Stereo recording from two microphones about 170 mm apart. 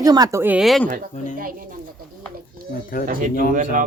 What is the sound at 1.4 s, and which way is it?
Speech, 55° right (ahead or behind).